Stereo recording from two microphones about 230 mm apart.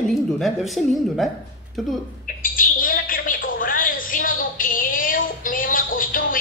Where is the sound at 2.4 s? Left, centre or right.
Left.